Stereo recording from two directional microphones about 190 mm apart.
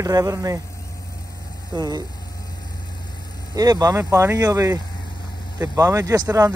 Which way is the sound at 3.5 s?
20° right (ahead or behind).